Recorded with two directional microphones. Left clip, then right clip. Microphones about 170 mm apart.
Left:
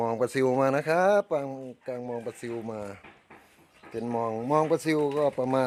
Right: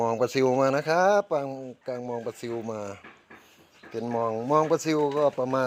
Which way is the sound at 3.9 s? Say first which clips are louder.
Right 2 dB; 15° left (ahead or behind).